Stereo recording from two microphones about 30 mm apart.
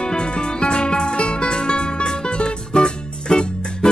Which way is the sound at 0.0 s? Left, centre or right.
Left.